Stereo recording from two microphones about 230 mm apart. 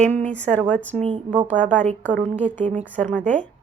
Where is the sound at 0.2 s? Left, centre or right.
Centre.